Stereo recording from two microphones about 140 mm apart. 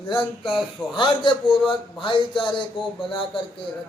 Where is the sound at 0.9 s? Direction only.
35° left (ahead or behind).